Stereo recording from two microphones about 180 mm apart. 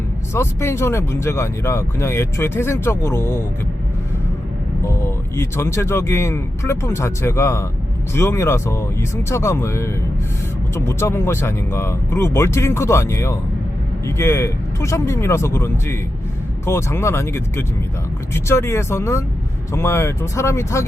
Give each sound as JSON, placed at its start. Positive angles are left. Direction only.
{"t": 0.3, "sound": "speech", "side_deg": 15}
{"t": 4.8, "sound": "speech", "side_deg": 15}